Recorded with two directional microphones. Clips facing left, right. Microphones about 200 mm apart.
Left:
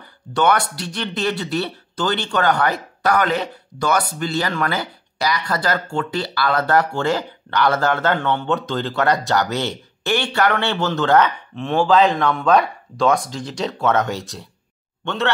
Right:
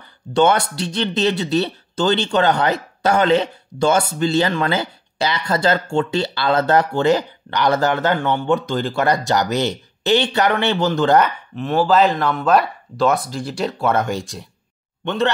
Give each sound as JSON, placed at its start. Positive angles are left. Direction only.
{"t": 0.3, "sound": "speech", "side_deg": -25}